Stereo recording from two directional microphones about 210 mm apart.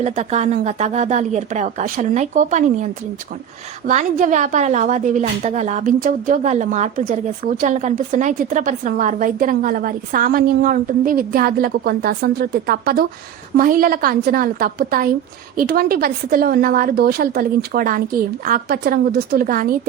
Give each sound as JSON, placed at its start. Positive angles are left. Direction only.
{"t": 0.0, "sound": "a woman's voice", "side_deg": -30}